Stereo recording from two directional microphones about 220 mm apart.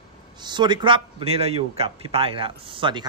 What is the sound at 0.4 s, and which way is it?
A man's voice, 20° right (ahead or behind).